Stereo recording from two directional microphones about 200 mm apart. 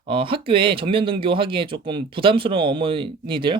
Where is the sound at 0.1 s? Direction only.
25° right (ahead or behind).